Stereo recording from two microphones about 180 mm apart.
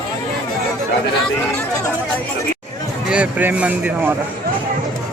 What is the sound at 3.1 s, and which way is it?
Speech, 10° right (ahead or behind).